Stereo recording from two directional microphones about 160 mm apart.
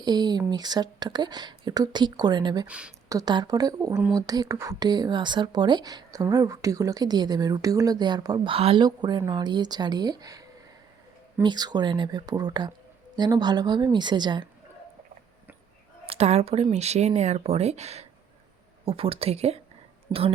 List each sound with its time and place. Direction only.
0.0 s speech: 25° right (ahead or behind)
2.6 s speech: 5° right (ahead or behind)
3.1 s speech: 25° right (ahead or behind)
11.4 s speech: 25° right (ahead or behind)
16.0 s speech: 40° right (ahead or behind)
20.1 s speech: 25° right (ahead or behind)